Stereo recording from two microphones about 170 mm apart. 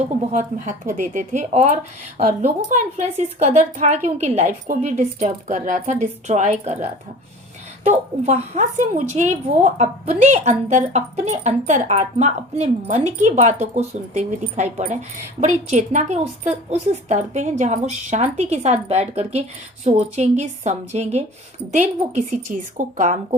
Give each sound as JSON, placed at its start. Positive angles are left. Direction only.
{"t": 0.3, "sound": "speech", "side_deg": -45}
{"t": 8.2, "sound": "a woman's voice", "side_deg": -40}